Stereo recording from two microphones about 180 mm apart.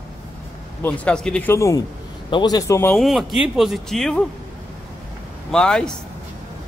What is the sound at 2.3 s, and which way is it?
Speech, 20° left (ahead or behind).